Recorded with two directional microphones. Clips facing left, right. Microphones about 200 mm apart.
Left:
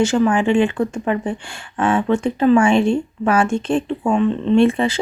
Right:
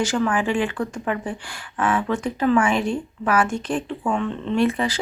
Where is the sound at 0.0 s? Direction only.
25° left (ahead or behind).